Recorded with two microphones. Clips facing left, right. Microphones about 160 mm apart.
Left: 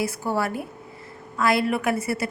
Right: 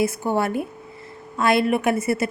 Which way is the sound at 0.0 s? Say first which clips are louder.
Right 4 dB; 20° right (ahead or behind).